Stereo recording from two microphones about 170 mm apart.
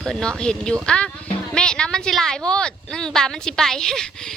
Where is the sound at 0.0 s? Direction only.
5° left (ahead or behind).